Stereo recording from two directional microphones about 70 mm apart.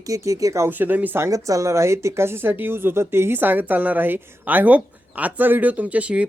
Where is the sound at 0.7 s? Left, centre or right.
Right.